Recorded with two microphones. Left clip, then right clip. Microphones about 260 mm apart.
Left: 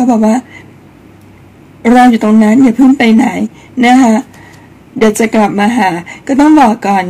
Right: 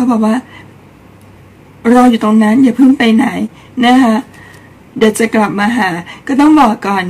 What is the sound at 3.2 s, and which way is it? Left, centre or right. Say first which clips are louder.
Speech: left 2 dB; right.